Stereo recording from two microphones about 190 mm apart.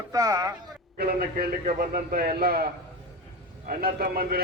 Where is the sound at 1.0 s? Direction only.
50° right (ahead or behind).